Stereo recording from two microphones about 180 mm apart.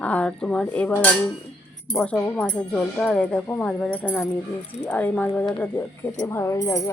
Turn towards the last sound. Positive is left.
turn(degrees=20)  # may be behind; listen again after turning